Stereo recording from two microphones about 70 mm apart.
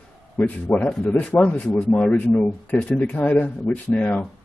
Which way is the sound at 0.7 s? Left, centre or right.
Left.